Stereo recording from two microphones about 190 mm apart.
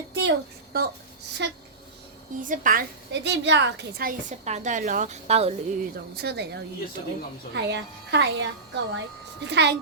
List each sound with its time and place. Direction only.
0.1 s a sound: 70° right (ahead or behind)
1.4 s speech: 65° right (ahead or behind)
2.4 s speech: 45° right (ahead or behind)
3.1 s a woman's voice: 65° right (ahead or behind)
4.0 s a woman's voice: 40° right (ahead or behind)
6.1 s a woman's voice: 60° right (ahead or behind); by 9.0 s 75° right (ahead or behind)
9.5 s speech: 65° right (ahead or behind)